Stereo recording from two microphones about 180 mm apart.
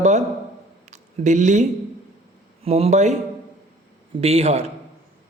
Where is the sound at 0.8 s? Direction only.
40° right (ahead or behind).